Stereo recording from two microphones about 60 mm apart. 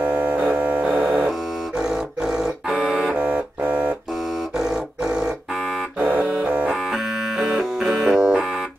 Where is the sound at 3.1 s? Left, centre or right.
Right.